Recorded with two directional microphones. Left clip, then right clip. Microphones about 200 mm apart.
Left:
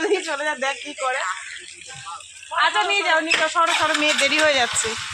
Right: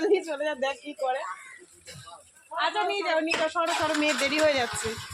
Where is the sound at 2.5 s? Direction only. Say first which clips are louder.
Left 8 dB; 10° left (ahead or behind).